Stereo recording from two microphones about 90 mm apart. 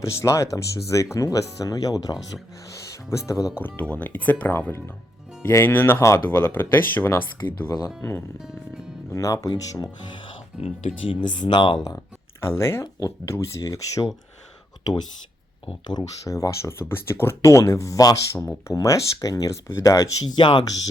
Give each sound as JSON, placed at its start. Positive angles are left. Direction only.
{"t": 0.0, "sound": "speech", "side_deg": 35}
{"t": 3.6, "sound": "speech", "side_deg": 15}
{"t": 7.7, "sound": "speech", "side_deg": 40}
{"t": 9.0, "sound": "speech", "side_deg": 35}
{"t": 10.6, "sound": "speech", "side_deg": 85}
{"t": 12.4, "sound": "speech", "side_deg": 30}
{"t": 15.9, "sound": "speech", "side_deg": 45}
{"t": 20.2, "sound": "speech", "side_deg": 60}